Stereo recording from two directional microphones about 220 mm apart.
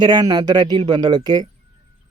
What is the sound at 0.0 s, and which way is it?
Speech, 20° right (ahead or behind).